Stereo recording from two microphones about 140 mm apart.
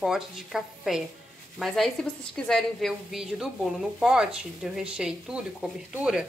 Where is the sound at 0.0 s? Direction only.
Centre (ahead or behind).